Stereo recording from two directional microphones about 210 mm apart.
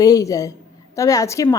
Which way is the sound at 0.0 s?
15° left (ahead or behind).